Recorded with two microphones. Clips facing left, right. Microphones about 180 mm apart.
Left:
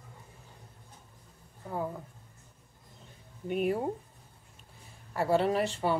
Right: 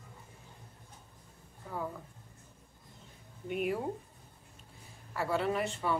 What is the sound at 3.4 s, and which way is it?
Speech, 35° left (ahead or behind).